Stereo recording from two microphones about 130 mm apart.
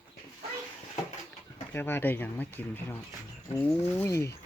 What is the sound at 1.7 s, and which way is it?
Speech, 15° left (ahead or behind).